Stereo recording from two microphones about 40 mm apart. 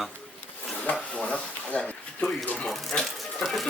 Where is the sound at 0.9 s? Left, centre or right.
Left.